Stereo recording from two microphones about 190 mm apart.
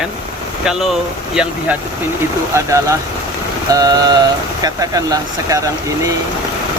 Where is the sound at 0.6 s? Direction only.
5° right (ahead or behind).